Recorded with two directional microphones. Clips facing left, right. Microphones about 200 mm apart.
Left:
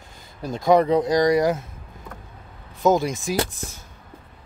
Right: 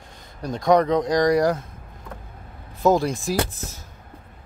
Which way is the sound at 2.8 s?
Centre (ahead or behind).